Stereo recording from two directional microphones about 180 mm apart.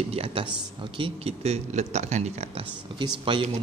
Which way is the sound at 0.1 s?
30° right (ahead or behind).